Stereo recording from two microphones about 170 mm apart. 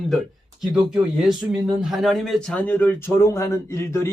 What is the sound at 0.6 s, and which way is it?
Speech, centre (ahead or behind).